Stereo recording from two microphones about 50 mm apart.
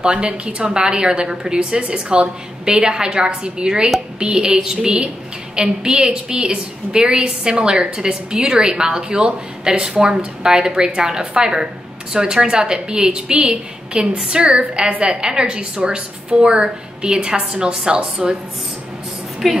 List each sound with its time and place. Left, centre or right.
0.0 s a woman's voice: centre
19.4 s a woman's voice: centre